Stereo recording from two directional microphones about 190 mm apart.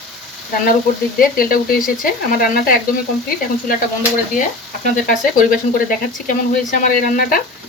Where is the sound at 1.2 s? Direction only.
50° left (ahead or behind).